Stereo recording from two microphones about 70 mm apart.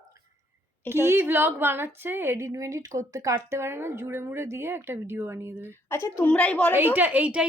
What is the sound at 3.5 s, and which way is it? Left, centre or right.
A woman's voice, right.